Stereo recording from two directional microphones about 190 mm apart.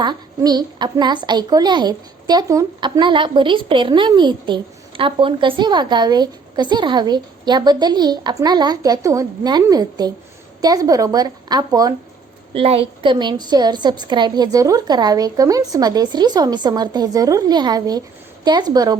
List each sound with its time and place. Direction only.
0.0 s a woman's voice: 20° right (ahead or behind)
12.5 s a woman's voice: 30° right (ahead or behind)